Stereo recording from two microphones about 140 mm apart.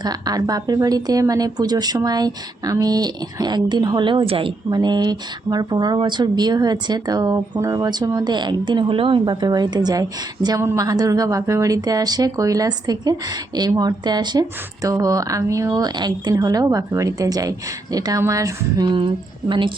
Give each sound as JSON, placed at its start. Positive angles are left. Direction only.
{"t": 0.0, "sound": "a woman's voice", "side_deg": -25}